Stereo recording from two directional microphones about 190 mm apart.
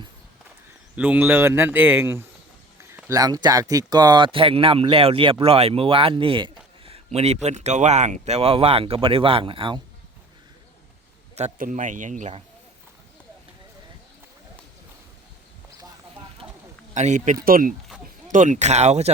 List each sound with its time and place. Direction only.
0.9 s speech: 10° right (ahead or behind); by 9.8 s 25° right (ahead or behind)
11.3 s speech: 40° right (ahead or behind)
16.4 s a sound: 25° right (ahead or behind)
16.9 s speech: 40° right (ahead or behind)